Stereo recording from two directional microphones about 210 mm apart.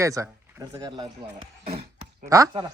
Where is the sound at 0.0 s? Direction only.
15° right (ahead or behind).